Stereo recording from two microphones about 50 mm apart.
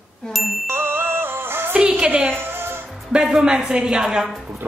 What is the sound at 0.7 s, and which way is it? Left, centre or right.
Music, right.